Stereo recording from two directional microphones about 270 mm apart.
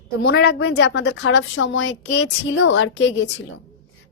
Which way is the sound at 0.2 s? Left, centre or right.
Left.